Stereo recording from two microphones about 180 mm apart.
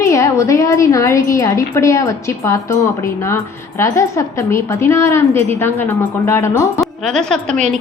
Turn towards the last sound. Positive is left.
turn(degrees=5)  # may be behind; listen again after turning